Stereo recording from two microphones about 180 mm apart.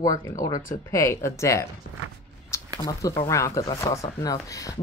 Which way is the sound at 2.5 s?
15° left (ahead or behind).